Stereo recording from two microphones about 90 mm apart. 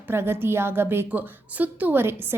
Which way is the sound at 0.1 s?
25° right (ahead or behind).